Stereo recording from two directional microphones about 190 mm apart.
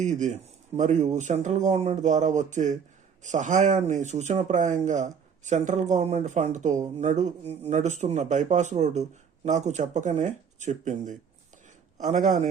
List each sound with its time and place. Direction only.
0.0 s speech: 40° right (ahead or behind)